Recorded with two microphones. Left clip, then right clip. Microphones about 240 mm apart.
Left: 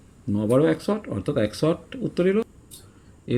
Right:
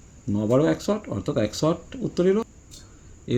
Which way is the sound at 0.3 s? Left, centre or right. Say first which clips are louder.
Left 1 dB; centre.